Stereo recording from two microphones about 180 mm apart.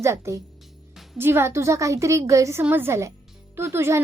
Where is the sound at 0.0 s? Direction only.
15° right (ahead or behind).